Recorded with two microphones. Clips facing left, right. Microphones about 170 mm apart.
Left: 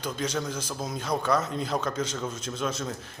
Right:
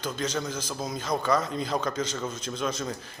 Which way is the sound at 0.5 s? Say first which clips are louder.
Even; 10° left (ahead or behind).